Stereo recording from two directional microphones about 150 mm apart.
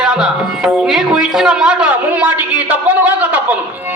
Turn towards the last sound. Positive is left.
turn(degrees=-10)  # may be behind; listen again after turning